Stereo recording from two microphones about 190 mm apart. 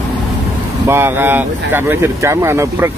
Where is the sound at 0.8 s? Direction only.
10° right (ahead or behind).